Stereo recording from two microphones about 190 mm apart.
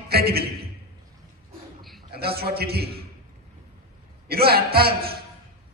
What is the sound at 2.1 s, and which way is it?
Speech, 55° right (ahead or behind).